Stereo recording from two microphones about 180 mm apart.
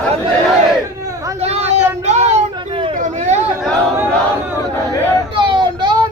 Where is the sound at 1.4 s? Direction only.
35° right (ahead or behind).